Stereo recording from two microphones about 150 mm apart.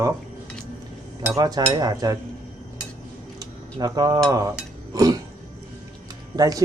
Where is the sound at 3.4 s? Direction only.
25° right (ahead or behind).